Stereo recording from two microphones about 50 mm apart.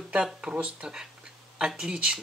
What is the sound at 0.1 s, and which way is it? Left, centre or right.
Speech, centre.